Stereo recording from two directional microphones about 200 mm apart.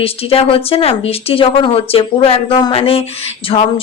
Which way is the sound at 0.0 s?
30° left (ahead or behind).